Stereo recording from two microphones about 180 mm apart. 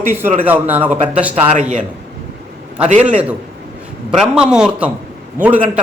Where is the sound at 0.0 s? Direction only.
10° right (ahead or behind).